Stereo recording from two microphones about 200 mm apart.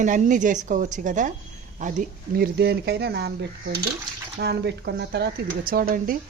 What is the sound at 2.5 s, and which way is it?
Speech, 55° right (ahead or behind).